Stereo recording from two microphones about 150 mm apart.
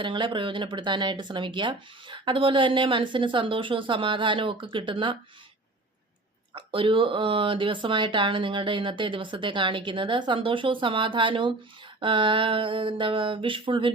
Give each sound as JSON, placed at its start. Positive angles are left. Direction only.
{"t": 0.0, "sound": "speech", "side_deg": -35}
{"t": 6.5, "sound": "speech", "side_deg": -35}